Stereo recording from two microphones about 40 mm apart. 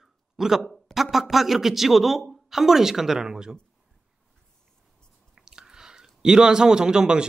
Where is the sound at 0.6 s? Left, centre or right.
Centre.